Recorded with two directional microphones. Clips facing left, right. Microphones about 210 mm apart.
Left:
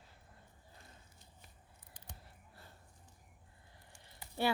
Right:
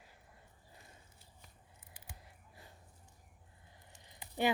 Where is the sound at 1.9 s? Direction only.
10° right (ahead or behind).